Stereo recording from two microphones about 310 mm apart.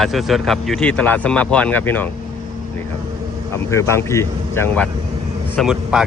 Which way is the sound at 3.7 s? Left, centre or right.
Centre.